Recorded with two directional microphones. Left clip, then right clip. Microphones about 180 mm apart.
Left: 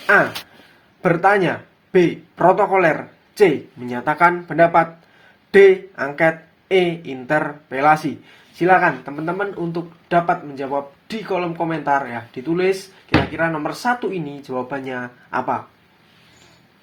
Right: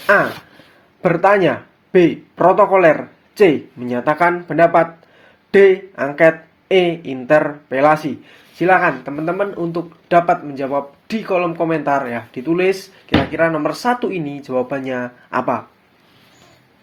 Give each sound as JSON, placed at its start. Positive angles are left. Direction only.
{"t": 0.0, "sound": "speech", "side_deg": -30}